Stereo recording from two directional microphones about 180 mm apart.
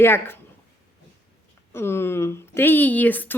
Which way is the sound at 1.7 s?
15° left (ahead or behind).